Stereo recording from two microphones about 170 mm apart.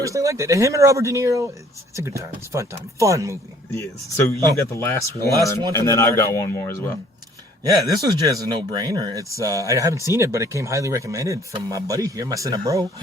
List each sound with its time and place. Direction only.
0.0 s speech: 20° right (ahead or behind)
3.7 s a man's voice: 15° left (ahead or behind)
7.6 s speech: 20° right (ahead or behind)